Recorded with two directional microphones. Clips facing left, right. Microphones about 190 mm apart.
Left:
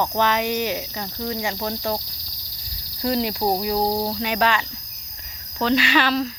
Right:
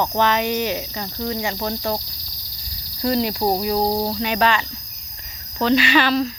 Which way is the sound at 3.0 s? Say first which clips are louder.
Right 2 dB; 15° left (ahead or behind).